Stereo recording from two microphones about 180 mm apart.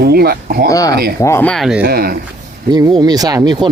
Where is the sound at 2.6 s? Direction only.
25° right (ahead or behind).